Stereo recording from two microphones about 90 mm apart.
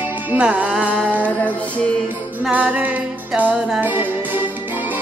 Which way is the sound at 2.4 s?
15° right (ahead or behind).